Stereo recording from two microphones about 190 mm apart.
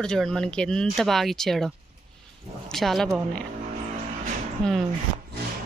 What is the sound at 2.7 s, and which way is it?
Speech, centre (ahead or behind).